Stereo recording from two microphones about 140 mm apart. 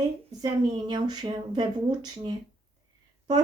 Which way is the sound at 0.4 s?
30° right (ahead or behind).